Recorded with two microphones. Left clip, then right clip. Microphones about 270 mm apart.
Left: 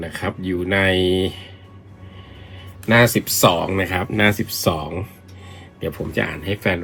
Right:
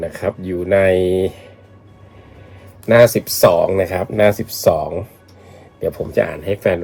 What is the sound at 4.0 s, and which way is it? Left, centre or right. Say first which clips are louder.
Speech: right 4 dB; left.